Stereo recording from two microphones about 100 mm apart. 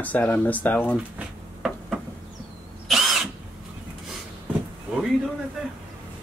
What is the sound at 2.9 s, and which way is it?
Vehicle, 5° right (ahead or behind).